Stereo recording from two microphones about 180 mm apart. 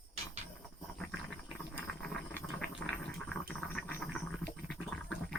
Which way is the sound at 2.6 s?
Centre (ahead or behind).